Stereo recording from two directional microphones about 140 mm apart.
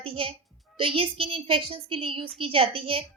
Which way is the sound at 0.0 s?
40° right (ahead or behind).